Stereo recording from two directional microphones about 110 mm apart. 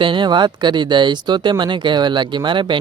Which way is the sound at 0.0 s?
50° right (ahead or behind).